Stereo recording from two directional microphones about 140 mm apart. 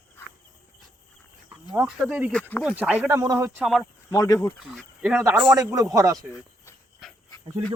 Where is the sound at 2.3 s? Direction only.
10° left (ahead or behind).